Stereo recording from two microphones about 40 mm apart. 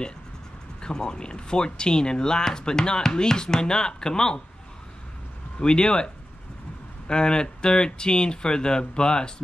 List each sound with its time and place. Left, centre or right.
0.7 s speech: left
5.6 s speech: left